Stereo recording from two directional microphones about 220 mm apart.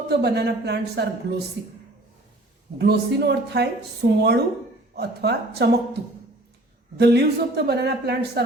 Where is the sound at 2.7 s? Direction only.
50° right (ahead or behind).